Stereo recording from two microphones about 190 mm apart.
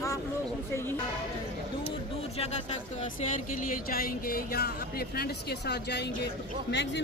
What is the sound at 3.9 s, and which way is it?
A woman's voice, 50° left (ahead or behind).